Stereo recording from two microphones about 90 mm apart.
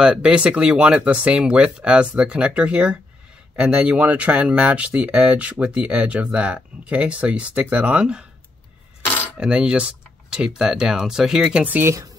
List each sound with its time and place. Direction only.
0.0 s speech: 10° right (ahead or behind)
9.4 s speech: 10° right (ahead or behind)
11.6 s speech: 20° right (ahead or behind)